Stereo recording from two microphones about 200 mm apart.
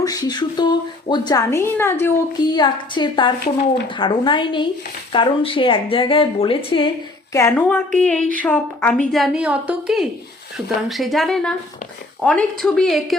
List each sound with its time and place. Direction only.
0.0 s a woman's voice: 20° left (ahead or behind)
7.3 s a woman's voice: 10° left (ahead or behind)